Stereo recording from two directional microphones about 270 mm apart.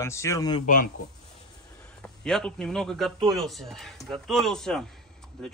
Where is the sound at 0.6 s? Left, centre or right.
Left.